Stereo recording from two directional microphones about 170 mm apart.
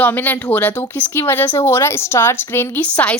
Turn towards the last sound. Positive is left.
turn(degrees=10)  # may be behind; listen again after turning